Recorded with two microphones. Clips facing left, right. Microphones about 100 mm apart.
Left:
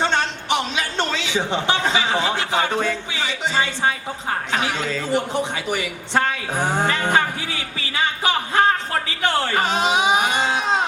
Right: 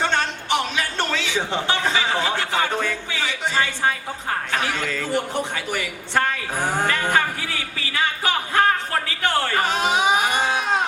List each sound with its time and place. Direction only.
0.0 s a man's voice: 20° left (ahead or behind)
7.9 s music: 20° left (ahead or behind)
9.2 s a sound: 20° left (ahead or behind)